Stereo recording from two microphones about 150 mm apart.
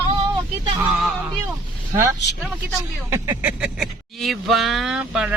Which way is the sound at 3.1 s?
15° right (ahead or behind).